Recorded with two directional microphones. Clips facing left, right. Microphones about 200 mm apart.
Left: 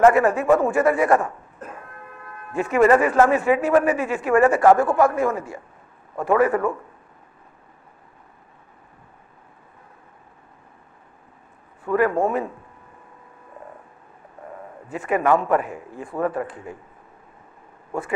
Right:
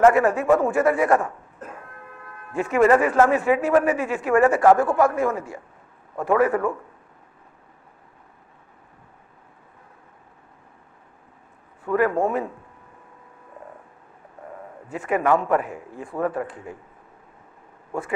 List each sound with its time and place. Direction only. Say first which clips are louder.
0.0 s a man's voice: left 1 dB; 25° left (ahead or behind)
11.8 s speech: left 1 dB; 30° left (ahead or behind)
14.9 s a man's voice: left 1 dB; 20° left (ahead or behind)